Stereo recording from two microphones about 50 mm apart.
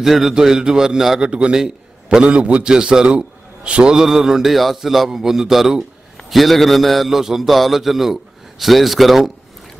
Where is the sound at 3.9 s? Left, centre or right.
Centre.